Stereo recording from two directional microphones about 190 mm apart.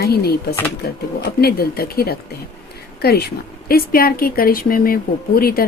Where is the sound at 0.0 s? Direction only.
55° left (ahead or behind).